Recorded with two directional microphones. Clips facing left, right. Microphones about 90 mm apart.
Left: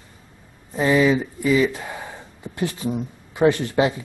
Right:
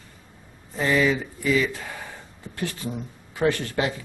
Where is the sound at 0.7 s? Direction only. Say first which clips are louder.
Left 4 dB; 20° left (ahead or behind).